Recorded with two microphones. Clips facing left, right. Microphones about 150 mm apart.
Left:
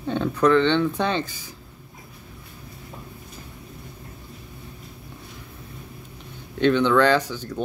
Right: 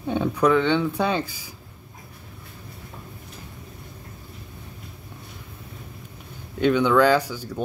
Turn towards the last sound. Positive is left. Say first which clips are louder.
# even
turn(degrees=-5)  # may be behind; listen again after turning